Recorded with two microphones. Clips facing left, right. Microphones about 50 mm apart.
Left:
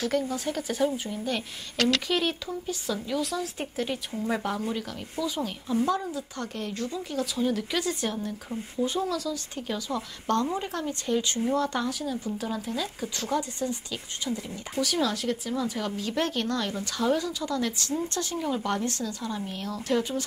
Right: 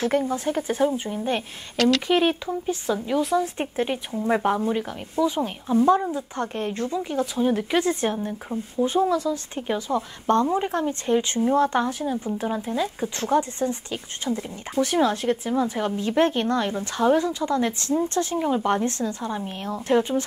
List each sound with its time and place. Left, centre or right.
0.0 s a woman's voice: right
1.8 s speech: centre
2.0 s a woman's voice: right